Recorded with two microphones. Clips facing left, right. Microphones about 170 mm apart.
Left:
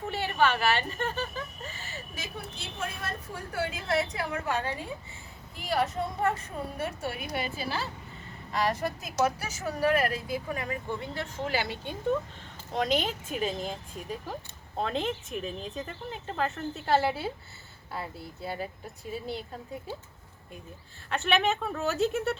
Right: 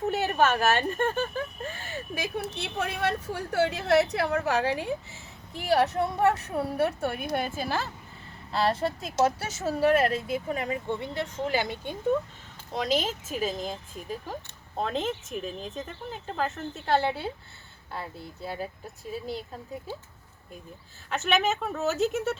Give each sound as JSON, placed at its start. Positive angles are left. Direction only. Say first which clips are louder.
{"t": 0.0, "sound": "a woman's voice", "louder": "right 3 dB", "side_deg": -45}
{"t": 8.5, "sound": "speech", "louder": "right 3 dB", "side_deg": -30}
{"t": 12.7, "sound": "speech", "louder": "even", "side_deg": 0}
{"t": 14.8, "sound": "speech", "louder": "right 1 dB", "side_deg": 0}
{"t": 21.1, "sound": "speech", "louder": "right 1 dB", "side_deg": 0}